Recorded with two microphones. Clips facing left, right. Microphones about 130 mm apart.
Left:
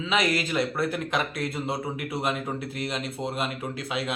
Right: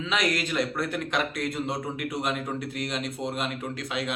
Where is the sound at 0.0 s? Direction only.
Centre (ahead or behind).